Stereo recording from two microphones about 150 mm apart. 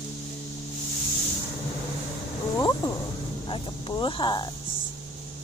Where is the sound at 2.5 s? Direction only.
25° left (ahead or behind).